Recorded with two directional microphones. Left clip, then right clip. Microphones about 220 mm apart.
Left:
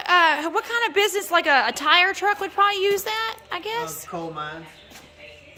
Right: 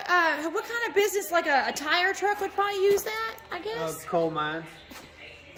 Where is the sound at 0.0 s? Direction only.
5° left (ahead or behind).